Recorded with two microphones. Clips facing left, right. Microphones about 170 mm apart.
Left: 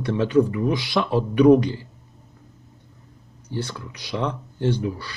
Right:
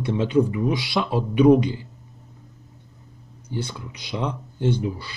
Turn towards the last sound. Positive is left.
turn(degrees=-20)  # may be behind; listen again after turning